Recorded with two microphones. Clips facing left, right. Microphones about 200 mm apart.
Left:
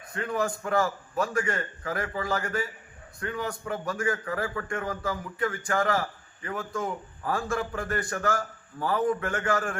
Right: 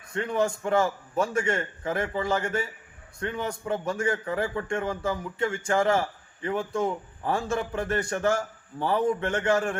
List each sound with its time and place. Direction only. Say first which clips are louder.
0.1 s a man's voice: right 3 dB; 25° right (ahead or behind)